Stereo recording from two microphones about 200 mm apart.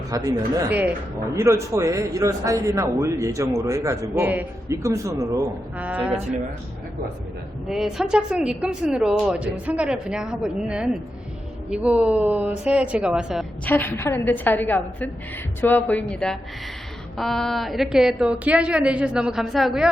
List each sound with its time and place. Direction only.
0.1 s a man's voice: 20° right (ahead or behind)
7.7 s speech: centre (ahead or behind)
13.7 s a woman's voice: 10° left (ahead or behind)